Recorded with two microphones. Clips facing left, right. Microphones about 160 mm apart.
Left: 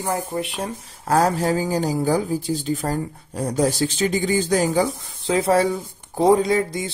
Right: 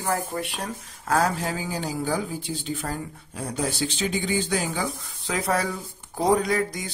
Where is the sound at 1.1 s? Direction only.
40° left (ahead or behind).